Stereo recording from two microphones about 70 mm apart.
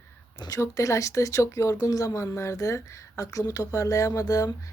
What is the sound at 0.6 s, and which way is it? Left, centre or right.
Speech, left.